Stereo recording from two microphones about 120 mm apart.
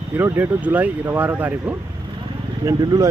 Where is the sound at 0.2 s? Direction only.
20° right (ahead or behind).